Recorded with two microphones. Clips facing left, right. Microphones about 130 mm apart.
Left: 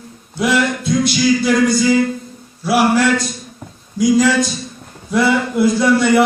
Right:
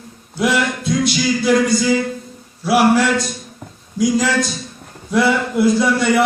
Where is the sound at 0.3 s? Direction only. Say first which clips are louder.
Left 1 dB; centre (ahead or behind).